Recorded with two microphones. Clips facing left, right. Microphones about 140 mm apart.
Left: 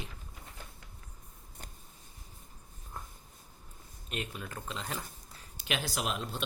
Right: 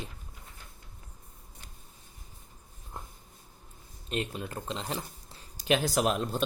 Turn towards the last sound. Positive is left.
turn(degrees=-45)  # may be behind; listen again after turning